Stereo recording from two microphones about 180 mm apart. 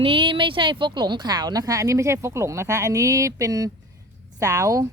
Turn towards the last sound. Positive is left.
turn(degrees=-20)  # may be behind; listen again after turning